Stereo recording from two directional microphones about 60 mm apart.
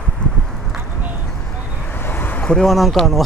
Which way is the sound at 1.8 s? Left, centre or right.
Left.